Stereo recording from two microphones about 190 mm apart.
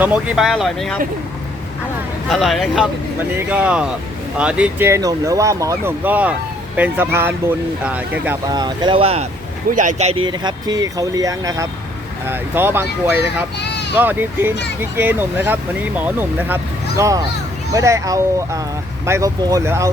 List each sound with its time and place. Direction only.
0.0 s speech: 5° right (ahead or behind)
2.3 s speech: centre (ahead or behind)
8.4 s speech: 20° right (ahead or behind)
13.6 s a sound: 60° left (ahead or behind)
13.9 s speech: 10° right (ahead or behind)